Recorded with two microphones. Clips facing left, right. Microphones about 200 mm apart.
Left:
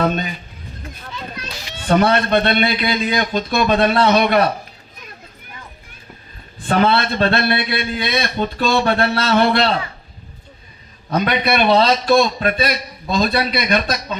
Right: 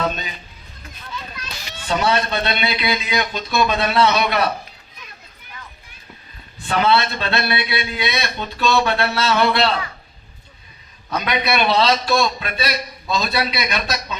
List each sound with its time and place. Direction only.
0.0 s a man's voice: 50° left (ahead or behind)
1.9 s a man's voice: 55° left (ahead or behind)
6.6 s a man's voice: 45° left (ahead or behind)
11.1 s a man's voice: 50° left (ahead or behind)